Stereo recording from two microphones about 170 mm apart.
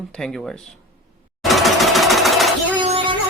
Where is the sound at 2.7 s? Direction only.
30° right (ahead or behind).